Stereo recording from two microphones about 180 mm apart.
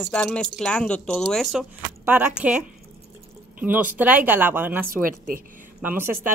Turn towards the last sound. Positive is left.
turn(degrees=-10)  # may be behind; listen again after turning